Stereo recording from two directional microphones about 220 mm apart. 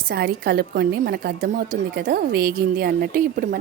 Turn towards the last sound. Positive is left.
turn(degrees=-40)  # may be behind; listen again after turning